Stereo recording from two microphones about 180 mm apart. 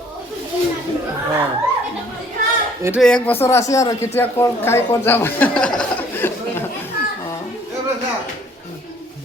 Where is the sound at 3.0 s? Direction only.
5° left (ahead or behind).